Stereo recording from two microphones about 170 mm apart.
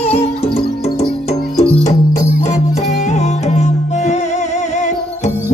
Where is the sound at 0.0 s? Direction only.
35° left (ahead or behind).